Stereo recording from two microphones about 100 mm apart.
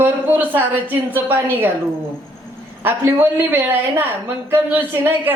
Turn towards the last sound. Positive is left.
turn(degrees=-20)  # may be behind; listen again after turning